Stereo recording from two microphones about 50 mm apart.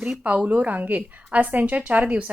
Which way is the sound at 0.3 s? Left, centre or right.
Right.